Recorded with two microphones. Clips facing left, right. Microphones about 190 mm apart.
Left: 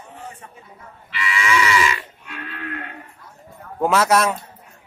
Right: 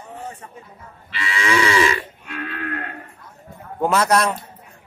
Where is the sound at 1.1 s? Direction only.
30° right (ahead or behind).